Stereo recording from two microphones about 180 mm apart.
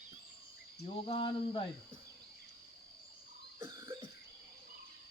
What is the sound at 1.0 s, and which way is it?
Cricket, 30° left (ahead or behind).